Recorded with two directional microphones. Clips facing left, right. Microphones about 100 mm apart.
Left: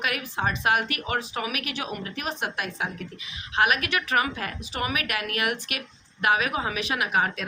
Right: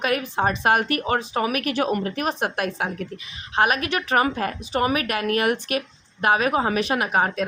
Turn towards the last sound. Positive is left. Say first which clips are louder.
# right 4 dB
turn(degrees=-35)  # may be behind; listen again after turning